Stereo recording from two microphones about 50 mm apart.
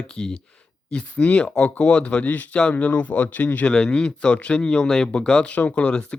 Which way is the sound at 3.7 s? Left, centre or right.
Centre.